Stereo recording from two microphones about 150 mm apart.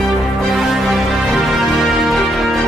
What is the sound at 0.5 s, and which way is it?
Music, centre (ahead or behind).